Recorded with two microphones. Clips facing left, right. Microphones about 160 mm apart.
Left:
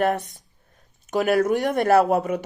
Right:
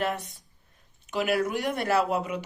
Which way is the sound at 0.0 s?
50° left (ahead or behind).